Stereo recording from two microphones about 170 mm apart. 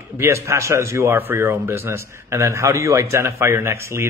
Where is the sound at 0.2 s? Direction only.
15° right (ahead or behind).